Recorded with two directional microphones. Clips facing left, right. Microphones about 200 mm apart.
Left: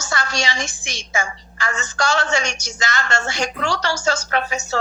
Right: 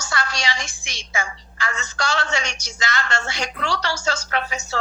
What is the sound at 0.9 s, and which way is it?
A woman's voice, 45° left (ahead or behind).